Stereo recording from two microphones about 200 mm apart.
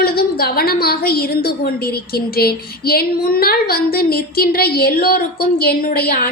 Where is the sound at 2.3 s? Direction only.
50° left (ahead or behind).